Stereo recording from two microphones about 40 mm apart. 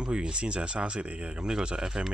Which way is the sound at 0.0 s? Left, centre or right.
Right.